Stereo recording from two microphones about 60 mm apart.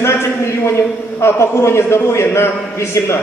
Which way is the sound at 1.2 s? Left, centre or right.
Left.